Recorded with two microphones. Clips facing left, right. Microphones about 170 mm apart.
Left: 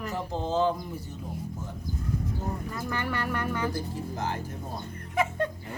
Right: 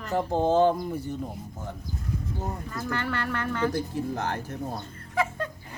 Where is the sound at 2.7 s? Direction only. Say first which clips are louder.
Right 3 dB; 10° left (ahead or behind).